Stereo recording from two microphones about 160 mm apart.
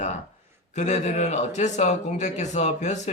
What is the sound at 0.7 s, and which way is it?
A man's voice, 45° left (ahead or behind).